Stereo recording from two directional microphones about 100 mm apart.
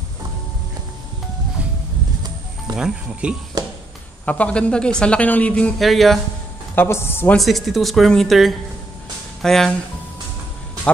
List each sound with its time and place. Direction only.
2.7 s speech: 10° right (ahead or behind)
4.3 s speech: 15° left (ahead or behind)
5.8 s speech: centre (ahead or behind)
6.7 s speech: 20° left (ahead or behind)
7.3 s speech: centre (ahead or behind)